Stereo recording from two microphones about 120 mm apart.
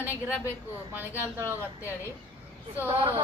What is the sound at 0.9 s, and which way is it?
Speech, 15° right (ahead or behind).